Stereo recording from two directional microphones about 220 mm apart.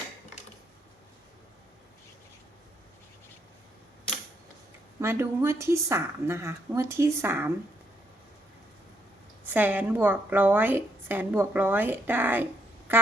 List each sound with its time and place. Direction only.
4.9 s a woman's voice: 10° right (ahead or behind)
9.5 s a woman's voice: 10° right (ahead or behind)
12.9 s a sound: 10° right (ahead or behind)